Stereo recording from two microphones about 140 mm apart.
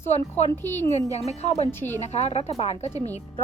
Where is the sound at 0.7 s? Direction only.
55° left (ahead or behind).